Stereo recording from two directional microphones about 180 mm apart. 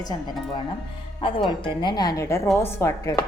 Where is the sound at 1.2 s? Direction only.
30° left (ahead or behind).